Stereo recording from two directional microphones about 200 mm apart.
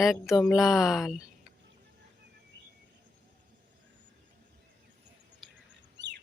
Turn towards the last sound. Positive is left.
turn(degrees=-60)  # may be behind; listen again after turning